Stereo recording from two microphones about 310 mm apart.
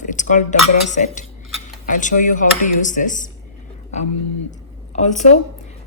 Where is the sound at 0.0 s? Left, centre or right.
Left.